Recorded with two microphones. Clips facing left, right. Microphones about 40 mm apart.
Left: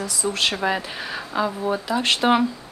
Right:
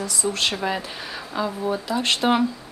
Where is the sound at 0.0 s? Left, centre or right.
Centre.